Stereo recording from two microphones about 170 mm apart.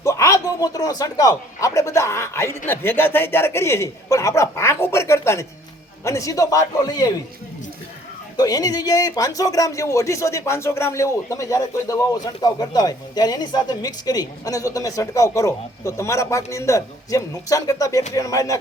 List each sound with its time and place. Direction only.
0.0 s a man's voice: 20° left (ahead or behind)
8.4 s speech: 20° left (ahead or behind)